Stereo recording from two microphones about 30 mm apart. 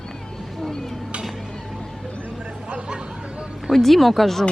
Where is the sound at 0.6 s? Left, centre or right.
Centre.